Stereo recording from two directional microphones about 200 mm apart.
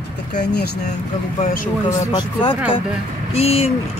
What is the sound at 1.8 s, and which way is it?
Speech, 20° left (ahead or behind).